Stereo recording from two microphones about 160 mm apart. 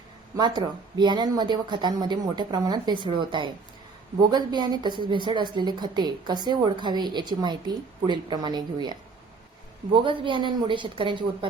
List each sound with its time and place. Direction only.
0.3 s a woman's voice: 25° right (ahead or behind)